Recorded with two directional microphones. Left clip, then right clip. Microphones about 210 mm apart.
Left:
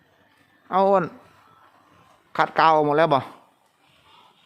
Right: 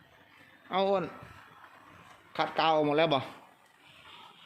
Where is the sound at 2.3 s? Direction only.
40° left (ahead or behind).